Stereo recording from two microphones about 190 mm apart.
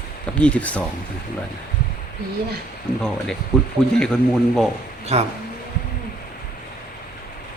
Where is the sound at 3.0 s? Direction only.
Centre (ahead or behind).